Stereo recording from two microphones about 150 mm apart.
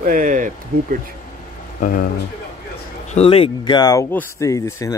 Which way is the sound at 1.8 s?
70° left (ahead or behind).